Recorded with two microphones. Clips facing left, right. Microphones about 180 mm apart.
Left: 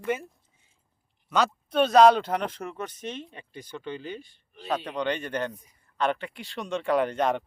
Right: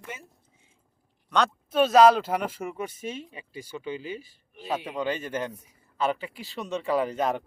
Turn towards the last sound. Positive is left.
turn(degrees=-5)  # may be behind; listen again after turning